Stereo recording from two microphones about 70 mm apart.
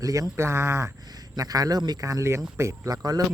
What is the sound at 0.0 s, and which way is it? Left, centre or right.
Speech, right.